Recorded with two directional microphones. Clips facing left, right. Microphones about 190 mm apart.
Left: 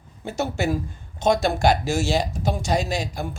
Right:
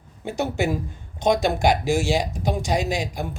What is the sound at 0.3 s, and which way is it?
A man's voice, 15° right (ahead or behind).